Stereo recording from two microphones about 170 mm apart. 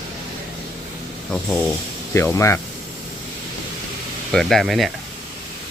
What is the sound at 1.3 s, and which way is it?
Speech, 5° left (ahead or behind).